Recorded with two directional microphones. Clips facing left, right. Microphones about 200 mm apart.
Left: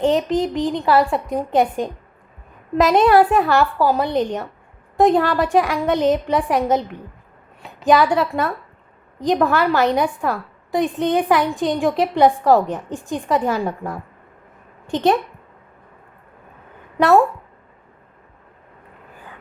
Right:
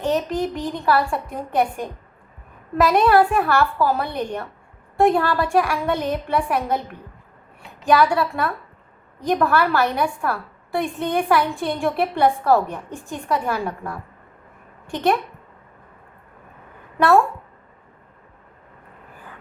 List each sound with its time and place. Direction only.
0.0 s a woman's voice: 20° left (ahead or behind)
7.9 s a woman's voice: 20° left (ahead or behind)